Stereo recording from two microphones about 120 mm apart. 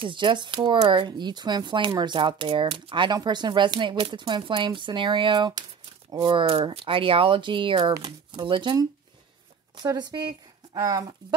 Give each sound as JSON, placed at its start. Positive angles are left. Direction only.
{"t": 0.0, "sound": "speech", "side_deg": -40}
{"t": 9.8, "sound": "speech", "side_deg": -35}